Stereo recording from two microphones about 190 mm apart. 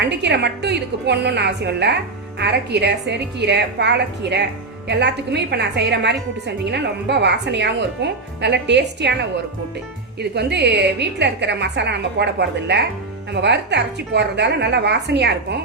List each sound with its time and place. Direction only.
0.0 s a woman's voice: 65° right (ahead or behind)
10.2 s a woman's voice: 60° right (ahead or behind)